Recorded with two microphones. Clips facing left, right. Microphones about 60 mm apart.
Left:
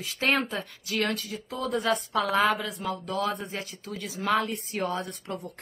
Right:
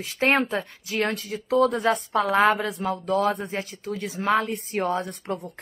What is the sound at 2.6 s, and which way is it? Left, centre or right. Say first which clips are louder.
A man's voice: right 5 dB; right.